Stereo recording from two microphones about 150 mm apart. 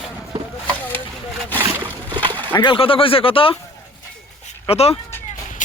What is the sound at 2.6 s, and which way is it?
Speech, 30° left (ahead or behind).